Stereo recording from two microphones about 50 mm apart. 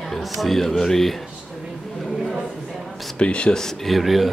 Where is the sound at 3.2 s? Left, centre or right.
Left.